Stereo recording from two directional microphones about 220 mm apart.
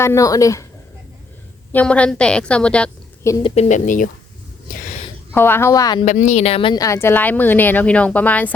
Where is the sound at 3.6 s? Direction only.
35° left (ahead or behind).